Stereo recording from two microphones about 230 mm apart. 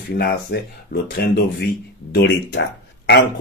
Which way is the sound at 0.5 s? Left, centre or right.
Left.